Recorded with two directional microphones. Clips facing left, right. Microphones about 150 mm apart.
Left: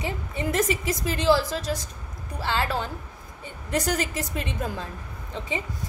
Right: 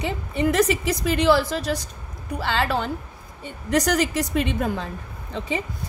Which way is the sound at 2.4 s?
75° right (ahead or behind).